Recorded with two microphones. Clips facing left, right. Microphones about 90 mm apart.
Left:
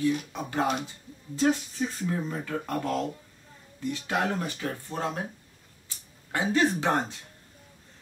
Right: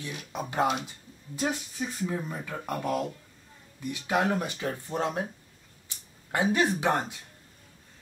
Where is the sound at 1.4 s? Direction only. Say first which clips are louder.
Left 5 dB; 15° right (ahead or behind).